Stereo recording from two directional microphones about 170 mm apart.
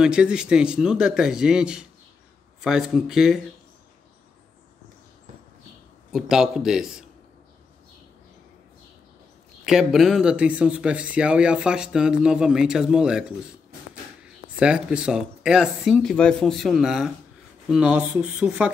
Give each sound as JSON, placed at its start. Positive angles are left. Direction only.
{"t": 0.0, "sound": "speech", "side_deg": -5}
{"t": 6.1, "sound": "speech", "side_deg": 0}
{"t": 9.7, "sound": "speech", "side_deg": 0}
{"t": 14.2, "sound": "speech", "side_deg": -5}